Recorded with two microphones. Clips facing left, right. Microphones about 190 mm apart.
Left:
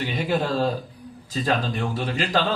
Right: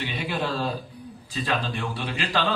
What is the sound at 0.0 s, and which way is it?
A man's voice, 45° left (ahead or behind).